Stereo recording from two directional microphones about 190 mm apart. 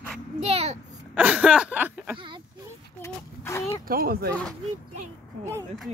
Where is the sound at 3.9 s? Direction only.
50° right (ahead or behind).